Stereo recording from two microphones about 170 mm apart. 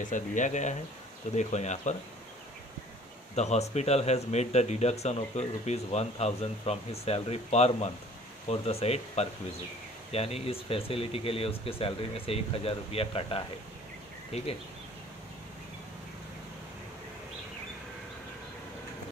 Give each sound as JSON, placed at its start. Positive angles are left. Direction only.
{"t": 0.0, "sound": "speech", "side_deg": 50}
{"t": 3.3, "sound": "speech", "side_deg": 40}